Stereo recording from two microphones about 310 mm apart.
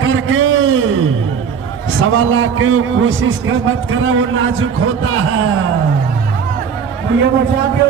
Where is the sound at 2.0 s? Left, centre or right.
Right.